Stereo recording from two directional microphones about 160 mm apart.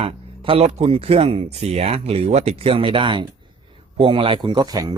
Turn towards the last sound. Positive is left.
turn(degrees=-25)  # may be behind; listen again after turning